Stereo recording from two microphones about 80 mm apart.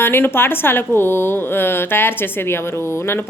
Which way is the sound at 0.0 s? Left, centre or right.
Left.